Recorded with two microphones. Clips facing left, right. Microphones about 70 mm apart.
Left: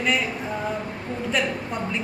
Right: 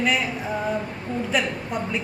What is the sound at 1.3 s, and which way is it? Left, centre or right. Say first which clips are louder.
Speech: left 1 dB; centre.